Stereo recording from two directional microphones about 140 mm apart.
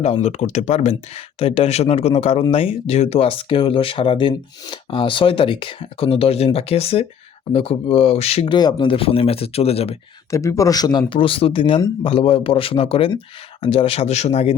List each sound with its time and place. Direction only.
0.0 s speech: 55° left (ahead or behind)
8.5 s speech: 30° left (ahead or behind)
10.3 s speech: 20° left (ahead or behind)
11.1 s speech: 40° left (ahead or behind)